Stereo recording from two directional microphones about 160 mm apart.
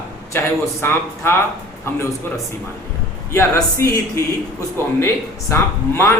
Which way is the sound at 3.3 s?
15° left (ahead or behind).